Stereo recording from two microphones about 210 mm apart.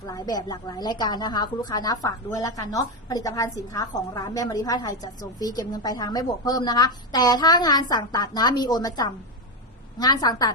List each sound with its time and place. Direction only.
0.0 s a woman's voice: 20° left (ahead or behind)